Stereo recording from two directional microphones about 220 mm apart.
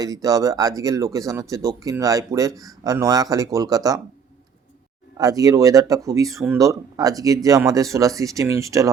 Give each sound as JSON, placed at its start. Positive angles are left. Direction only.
{"t": 0.0, "sound": "speech", "side_deg": -15}
{"t": 5.1, "sound": "speech", "side_deg": -15}